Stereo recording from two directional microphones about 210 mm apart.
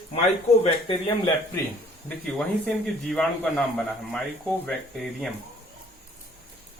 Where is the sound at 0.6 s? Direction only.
25° left (ahead or behind).